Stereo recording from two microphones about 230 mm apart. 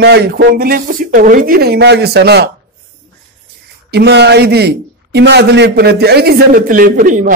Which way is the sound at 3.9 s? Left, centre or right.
Right.